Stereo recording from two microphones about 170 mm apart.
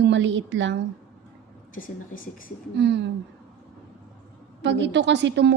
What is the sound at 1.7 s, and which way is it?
Speech, 55° left (ahead or behind).